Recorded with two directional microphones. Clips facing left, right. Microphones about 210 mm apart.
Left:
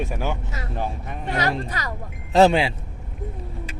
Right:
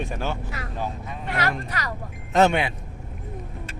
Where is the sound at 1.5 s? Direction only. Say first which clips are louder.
Left 2 dB; 25° left (ahead or behind).